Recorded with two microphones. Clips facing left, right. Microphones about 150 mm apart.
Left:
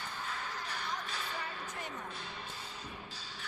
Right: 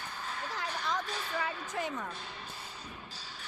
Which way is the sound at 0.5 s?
90° right.